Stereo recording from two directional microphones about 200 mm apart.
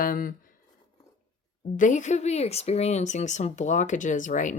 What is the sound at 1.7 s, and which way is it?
Speech, 40° left (ahead or behind).